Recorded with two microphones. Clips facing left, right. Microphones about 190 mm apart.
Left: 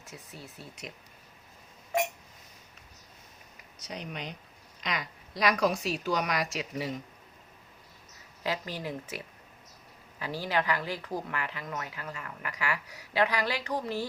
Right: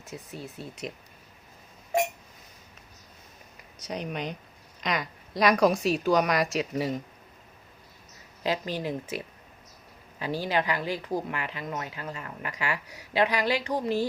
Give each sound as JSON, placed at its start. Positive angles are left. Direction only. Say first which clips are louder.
{"t": 0.3, "sound": "speech", "louder": "right 7 dB", "side_deg": -20}
{"t": 3.8, "sound": "a woman's voice", "louder": "right 6 dB", "side_deg": -50}
{"t": 8.4, "sound": "speech", "louder": "right 5 dB", "side_deg": -20}